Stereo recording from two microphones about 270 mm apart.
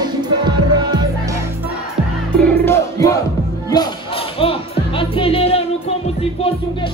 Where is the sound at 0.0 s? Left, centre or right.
Centre.